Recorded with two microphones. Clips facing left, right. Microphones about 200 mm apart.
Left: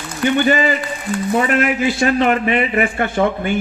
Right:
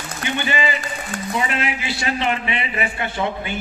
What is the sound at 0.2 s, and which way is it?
A man's voice, 45° left (ahead or behind).